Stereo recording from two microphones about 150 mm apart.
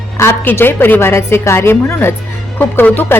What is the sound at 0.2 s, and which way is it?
A woman's voice, 15° left (ahead or behind).